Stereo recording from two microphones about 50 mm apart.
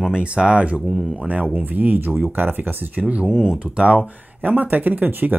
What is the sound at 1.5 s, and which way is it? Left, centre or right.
Speech, right.